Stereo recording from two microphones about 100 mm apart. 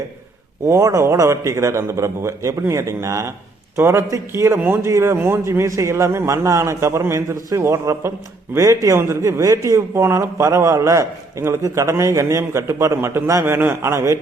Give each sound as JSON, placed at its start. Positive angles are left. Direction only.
{"t": 0.6, "sound": "a man's voice", "side_deg": -30}